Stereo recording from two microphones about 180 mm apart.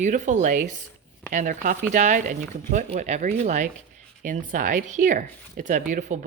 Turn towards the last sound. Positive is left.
turn(degrees=-45)  # may be behind; listen again after turning